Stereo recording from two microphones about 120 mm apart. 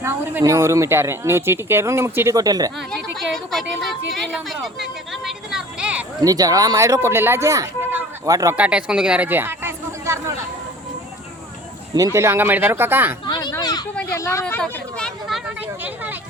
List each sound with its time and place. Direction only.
0.0 s speech: 25° right (ahead or behind)
2.9 s a woman's voice: centre (ahead or behind)
6.2 s speech: 30° right (ahead or behind)
8.3 s speech: 30° right (ahead or behind)
8.5 s speech: 10° right (ahead or behind)
11.9 s speech: 25° right (ahead or behind)
13.2 s a sound: 40° left (ahead or behind)
14.1 s speech: 25° left (ahead or behind)
14.4 s speech: 10° left (ahead or behind)
15.4 s a sound: 15° right (ahead or behind)